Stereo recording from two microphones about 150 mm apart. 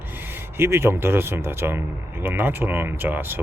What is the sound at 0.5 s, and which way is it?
Speech, 15° right (ahead or behind).